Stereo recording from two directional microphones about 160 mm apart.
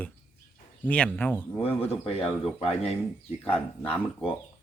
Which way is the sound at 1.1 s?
10° left (ahead or behind).